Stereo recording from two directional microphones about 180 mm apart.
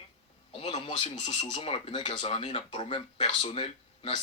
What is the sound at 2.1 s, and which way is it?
Speech, 40° left (ahead or behind).